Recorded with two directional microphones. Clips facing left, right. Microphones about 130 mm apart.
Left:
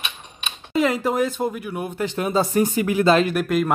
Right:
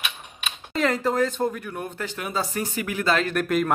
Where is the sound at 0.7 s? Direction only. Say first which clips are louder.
Left 2 dB; 10° left (ahead or behind).